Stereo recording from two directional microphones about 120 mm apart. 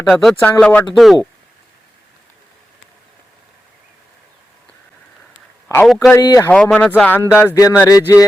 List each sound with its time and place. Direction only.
0.1 s speech: centre (ahead or behind)
0.9 s speech: centre (ahead or behind)
5.8 s speech: centre (ahead or behind)
6.1 s speech: 25° left (ahead or behind)
6.5 s speech: 10° left (ahead or behind)
7.2 s speech: 20° left (ahead or behind)